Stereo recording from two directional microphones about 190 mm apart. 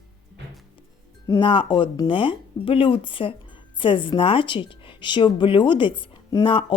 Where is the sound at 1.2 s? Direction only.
20° left (ahead or behind).